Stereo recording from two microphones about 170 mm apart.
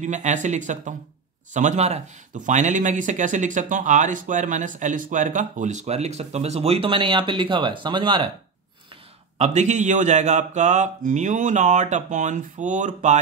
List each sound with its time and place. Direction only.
0.0 s speech: 45° right (ahead or behind); by 8.3 s 30° right (ahead or behind)
9.4 s speech: 45° right (ahead or behind)